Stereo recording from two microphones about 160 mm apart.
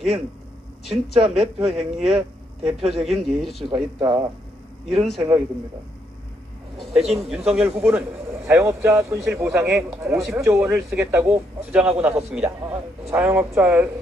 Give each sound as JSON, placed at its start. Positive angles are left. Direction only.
{"t": 0.8, "sound": "speech", "side_deg": 0}
{"t": 3.7, "sound": "speech", "side_deg": -25}
{"t": 5.0, "sound": "speech", "side_deg": 0}
{"t": 6.8, "sound": "a man's voice", "side_deg": 0}
{"t": 9.2, "sound": "speech", "side_deg": -5}